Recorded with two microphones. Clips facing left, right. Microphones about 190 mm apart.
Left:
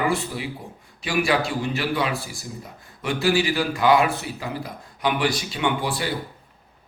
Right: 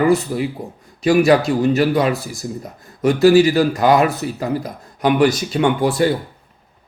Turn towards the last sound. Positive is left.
turn(degrees=-45)  # may be behind; listen again after turning